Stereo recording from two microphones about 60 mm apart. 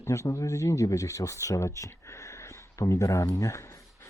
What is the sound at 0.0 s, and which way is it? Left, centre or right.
Speech, left.